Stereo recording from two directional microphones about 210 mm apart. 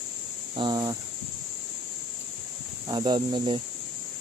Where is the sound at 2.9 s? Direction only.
20° right (ahead or behind).